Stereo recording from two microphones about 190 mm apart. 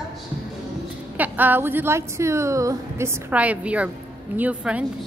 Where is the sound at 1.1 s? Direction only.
10° right (ahead or behind).